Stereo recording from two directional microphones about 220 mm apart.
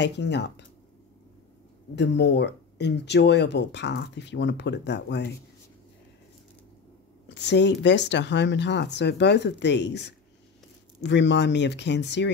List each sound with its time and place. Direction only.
0.0 s speech: 50° left (ahead or behind)
2.0 s speech: 50° left (ahead or behind)
7.2 s speech: 50° left (ahead or behind)